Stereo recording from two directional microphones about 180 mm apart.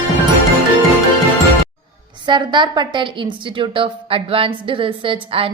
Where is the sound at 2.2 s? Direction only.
25° right (ahead or behind).